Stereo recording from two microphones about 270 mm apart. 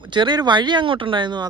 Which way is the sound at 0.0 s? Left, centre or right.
Centre.